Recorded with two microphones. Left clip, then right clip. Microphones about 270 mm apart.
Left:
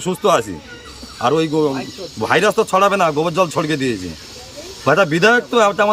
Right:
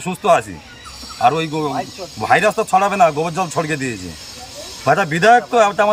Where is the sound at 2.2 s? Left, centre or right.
Centre.